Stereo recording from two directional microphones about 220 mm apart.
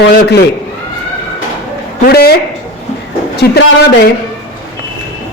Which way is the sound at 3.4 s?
45° left (ahead or behind).